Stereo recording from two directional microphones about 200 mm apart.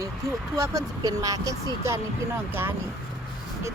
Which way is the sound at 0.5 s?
15° right (ahead or behind).